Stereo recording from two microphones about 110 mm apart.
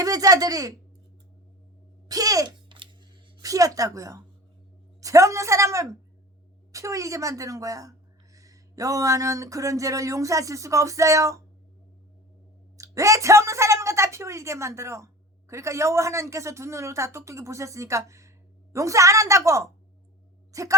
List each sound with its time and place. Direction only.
0.0 s a woman's voice: 35° right (ahead or behind)
2.0 s a woman's voice: 35° right (ahead or behind)
2.6 s scissors: 45° right (ahead or behind)
3.4 s a woman's voice: 30° right (ahead or behind)
12.7 s a woman's voice: 30° right (ahead or behind)
20.5 s a sound: 30° right (ahead or behind)